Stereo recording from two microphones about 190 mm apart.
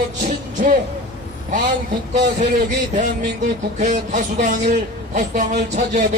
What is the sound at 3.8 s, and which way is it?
A man's voice, 50° right (ahead or behind).